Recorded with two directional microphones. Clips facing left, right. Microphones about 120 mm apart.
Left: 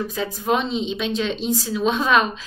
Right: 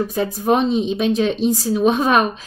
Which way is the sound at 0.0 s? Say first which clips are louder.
Right 5 dB; 45° right (ahead or behind).